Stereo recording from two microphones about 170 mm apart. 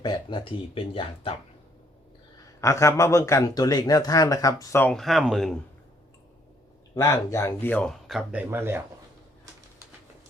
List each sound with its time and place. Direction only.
0.0 s speech: 30° left (ahead or behind)
2.4 s a man's voice: 15° left (ahead or behind)
4.9 s speech: centre (ahead or behind)
6.9 s speech: 20° left (ahead or behind); by 8.8 s 15° right (ahead or behind)